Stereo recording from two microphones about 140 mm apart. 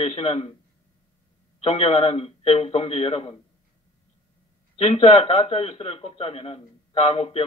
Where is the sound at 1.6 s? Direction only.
45° left (ahead or behind).